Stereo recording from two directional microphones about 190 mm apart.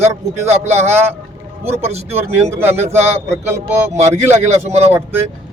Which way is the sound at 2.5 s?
10° right (ahead or behind).